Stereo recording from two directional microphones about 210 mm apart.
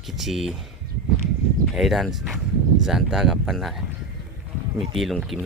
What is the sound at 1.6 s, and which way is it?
Speech, centre (ahead or behind).